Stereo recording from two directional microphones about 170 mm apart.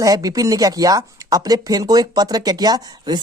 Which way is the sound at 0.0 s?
20° right (ahead or behind).